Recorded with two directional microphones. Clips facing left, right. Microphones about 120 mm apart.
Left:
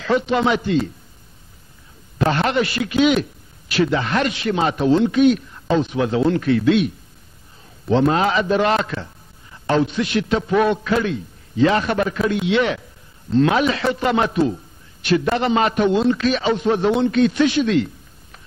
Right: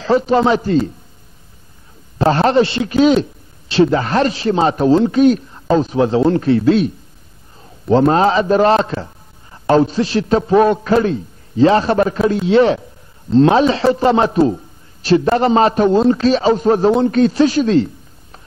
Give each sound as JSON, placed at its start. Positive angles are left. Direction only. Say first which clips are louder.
{"t": 0.0, "sound": "a man's voice", "louder": "right 5 dB", "side_deg": -35}
{"t": 2.1, "sound": "a man's voice", "louder": "right 6 dB", "side_deg": -35}
{"t": 7.9, "sound": "a man's voice", "louder": "right 5 dB", "side_deg": -40}